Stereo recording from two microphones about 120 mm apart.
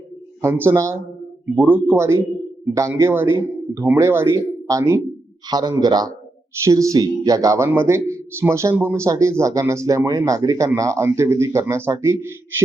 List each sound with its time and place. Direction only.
0.4 s a man's voice: 20° right (ahead or behind)